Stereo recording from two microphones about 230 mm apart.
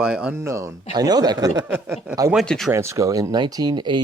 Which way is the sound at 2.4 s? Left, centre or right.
Centre.